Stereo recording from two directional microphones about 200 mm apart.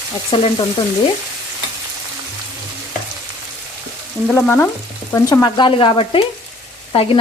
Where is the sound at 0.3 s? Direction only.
25° left (ahead or behind).